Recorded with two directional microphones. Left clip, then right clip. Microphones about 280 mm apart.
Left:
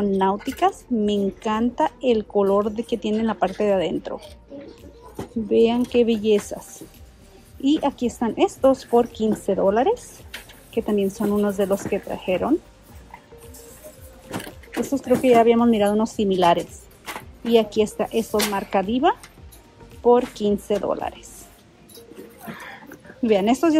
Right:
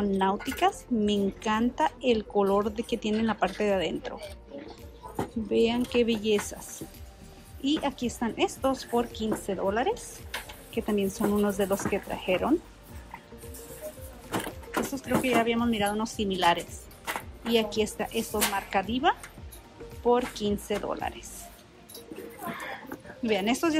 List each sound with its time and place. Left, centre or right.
0.0 s a woman's voice: centre
5.5 s a woman's voice: centre
7.6 s a woman's voice: centre
14.9 s a woman's voice: centre
22.8 s a sound: centre